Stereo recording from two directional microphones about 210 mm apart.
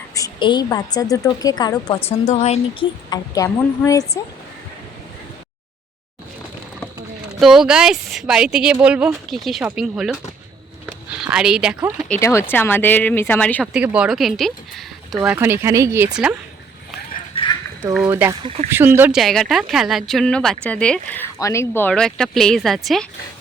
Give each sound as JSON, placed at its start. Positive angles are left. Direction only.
{"t": 0.1, "sound": "a woman's voice", "side_deg": 20}
{"t": 3.1, "sound": "speech", "side_deg": 15}
{"t": 7.3, "sound": "speech", "side_deg": 0}
{"t": 13.7, "sound": "speech", "side_deg": -5}
{"t": 15.3, "sound": "speech", "side_deg": -10}
{"t": 17.3, "sound": "a sound", "side_deg": 20}
{"t": 17.9, "sound": "speech", "side_deg": -5}
{"t": 18.4, "sound": "speech", "side_deg": -30}
{"t": 18.7, "sound": "speech", "side_deg": -10}